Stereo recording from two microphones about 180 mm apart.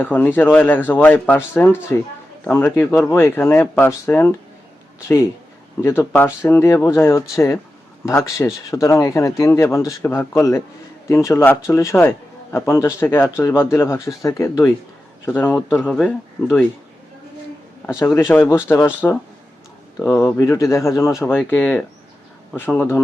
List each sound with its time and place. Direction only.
0.0 s a man's voice: 10° left (ahead or behind)
17.8 s a man's voice: 15° left (ahead or behind)
20.0 s a man's voice: 15° left (ahead or behind)